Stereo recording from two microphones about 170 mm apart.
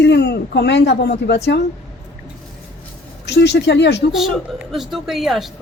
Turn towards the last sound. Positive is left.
turn(degrees=0)  # may be behind; listen again after turning